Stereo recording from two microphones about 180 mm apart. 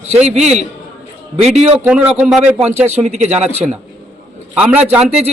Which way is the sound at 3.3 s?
5° right (ahead or behind).